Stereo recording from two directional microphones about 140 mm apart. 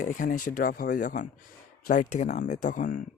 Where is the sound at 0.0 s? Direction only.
70° left (ahead or behind).